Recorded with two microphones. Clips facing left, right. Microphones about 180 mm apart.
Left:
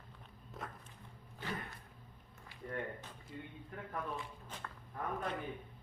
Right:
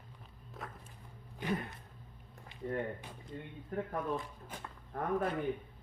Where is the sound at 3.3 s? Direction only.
40° right (ahead or behind).